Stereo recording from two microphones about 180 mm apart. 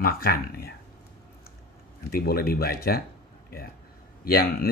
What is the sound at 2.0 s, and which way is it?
Speech, 55° left (ahead or behind).